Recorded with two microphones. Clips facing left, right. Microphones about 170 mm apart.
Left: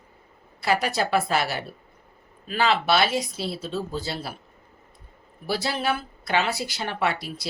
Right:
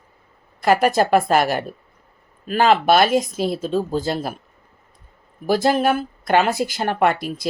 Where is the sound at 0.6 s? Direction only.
50° right (ahead or behind).